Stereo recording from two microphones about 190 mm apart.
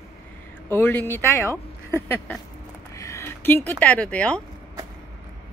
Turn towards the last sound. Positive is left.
turn(degrees=5)  # may be behind; listen again after turning